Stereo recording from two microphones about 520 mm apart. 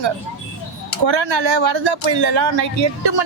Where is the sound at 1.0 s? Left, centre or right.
Right.